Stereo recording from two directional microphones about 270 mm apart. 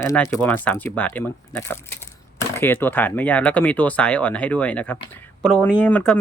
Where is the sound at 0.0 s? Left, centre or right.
Centre.